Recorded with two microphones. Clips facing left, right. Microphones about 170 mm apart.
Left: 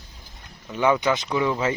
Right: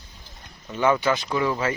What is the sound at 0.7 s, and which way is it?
Speech, 15° left (ahead or behind).